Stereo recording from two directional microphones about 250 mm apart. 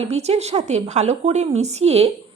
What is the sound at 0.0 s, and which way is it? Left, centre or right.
A woman's voice, right.